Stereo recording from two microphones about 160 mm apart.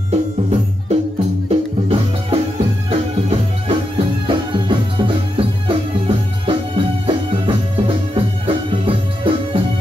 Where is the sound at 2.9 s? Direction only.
40° right (ahead or behind).